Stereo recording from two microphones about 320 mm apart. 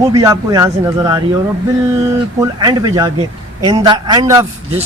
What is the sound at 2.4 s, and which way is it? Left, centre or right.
A man's voice, centre.